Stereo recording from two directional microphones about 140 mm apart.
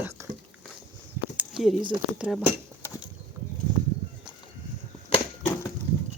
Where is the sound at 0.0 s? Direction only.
25° right (ahead or behind).